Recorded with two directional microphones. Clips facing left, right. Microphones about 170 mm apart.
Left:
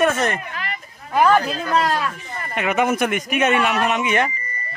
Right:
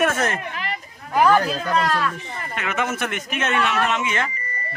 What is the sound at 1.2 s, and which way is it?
Speech, 15° left (ahead or behind).